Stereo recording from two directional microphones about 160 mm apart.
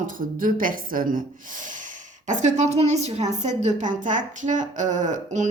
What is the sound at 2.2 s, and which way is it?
Speech, 50° right (ahead or behind).